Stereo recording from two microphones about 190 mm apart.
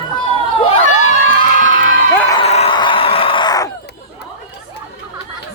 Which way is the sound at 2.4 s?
35° left (ahead or behind).